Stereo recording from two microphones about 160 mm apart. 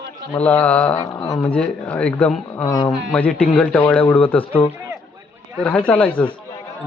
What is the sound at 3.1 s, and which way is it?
A man's voice, 5° left (ahead or behind).